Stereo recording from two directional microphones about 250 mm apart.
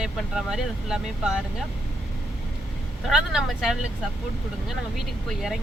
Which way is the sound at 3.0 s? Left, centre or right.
Centre.